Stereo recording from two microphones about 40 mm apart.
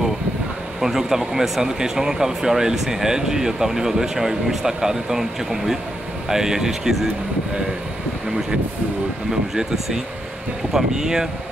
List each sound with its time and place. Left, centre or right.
0.7 s speech: centre
9.3 s speech: centre